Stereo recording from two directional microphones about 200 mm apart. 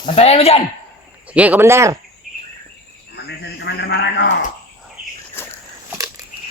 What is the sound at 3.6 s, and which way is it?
Speech, 60° left (ahead or behind).